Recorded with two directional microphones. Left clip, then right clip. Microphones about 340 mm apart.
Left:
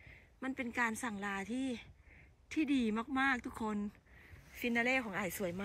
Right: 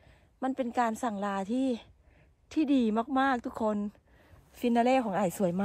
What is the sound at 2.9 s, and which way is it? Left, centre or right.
Speech, right.